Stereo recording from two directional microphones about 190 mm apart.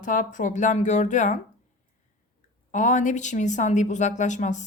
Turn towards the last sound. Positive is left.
turn(degrees=40)  # may be behind; listen again after turning